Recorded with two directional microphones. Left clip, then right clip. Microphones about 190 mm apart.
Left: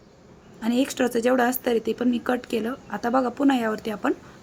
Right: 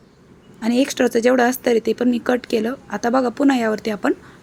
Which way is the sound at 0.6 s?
20° right (ahead or behind).